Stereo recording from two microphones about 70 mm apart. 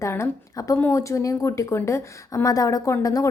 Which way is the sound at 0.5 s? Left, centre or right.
Left.